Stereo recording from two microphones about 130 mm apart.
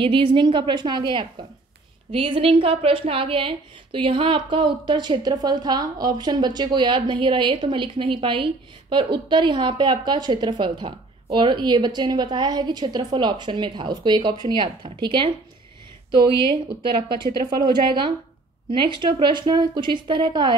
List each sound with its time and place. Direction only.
0.0 s a woman's voice: 40° right (ahead or behind)